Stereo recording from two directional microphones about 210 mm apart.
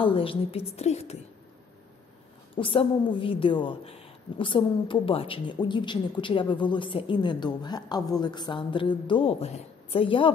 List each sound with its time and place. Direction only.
0.0 s a woman's voice: 25° left (ahead or behind)
2.5 s a woman's voice: 25° left (ahead or behind)